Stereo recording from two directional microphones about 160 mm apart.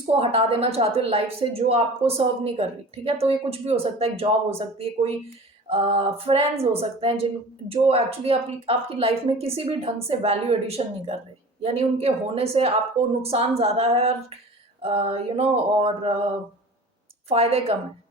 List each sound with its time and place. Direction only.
0.0 s a woman's voice: 35° right (ahead or behind)
17.2 s a woman's voice: 40° right (ahead or behind)